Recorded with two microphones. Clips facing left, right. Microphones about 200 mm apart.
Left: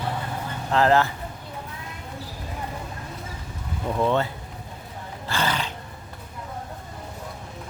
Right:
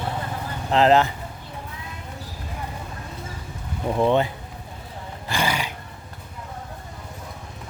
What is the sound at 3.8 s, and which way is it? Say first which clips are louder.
Speech: right 3 dB; 20° right (ahead or behind).